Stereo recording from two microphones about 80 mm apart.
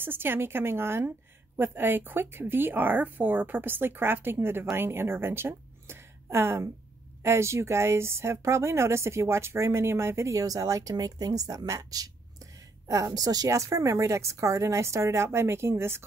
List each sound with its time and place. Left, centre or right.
0.0 s a woman's voice: right